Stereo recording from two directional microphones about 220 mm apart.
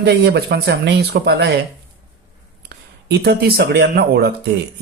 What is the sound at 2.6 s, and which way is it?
Speech, 50° right (ahead or behind).